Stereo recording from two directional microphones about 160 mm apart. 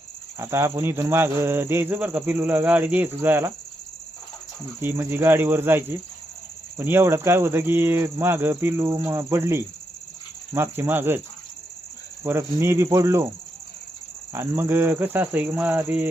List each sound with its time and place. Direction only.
0.3 s speech: 15° right (ahead or behind)
4.8 s speech: 10° right (ahead or behind)
12.2 s speech: 15° right (ahead or behind)
14.3 s speech: 15° right (ahead or behind)